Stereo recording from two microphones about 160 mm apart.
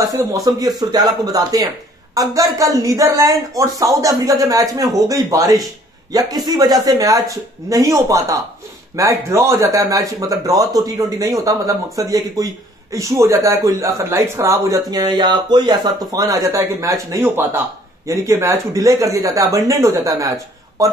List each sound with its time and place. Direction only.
0.0 s speech: 20° right (ahead or behind)